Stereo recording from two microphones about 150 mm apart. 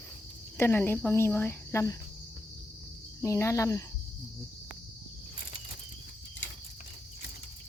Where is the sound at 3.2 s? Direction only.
20° left (ahead or behind).